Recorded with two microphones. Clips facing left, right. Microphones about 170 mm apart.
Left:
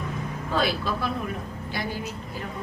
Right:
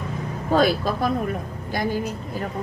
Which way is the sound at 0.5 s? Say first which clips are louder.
Right 7 dB; 45° right (ahead or behind).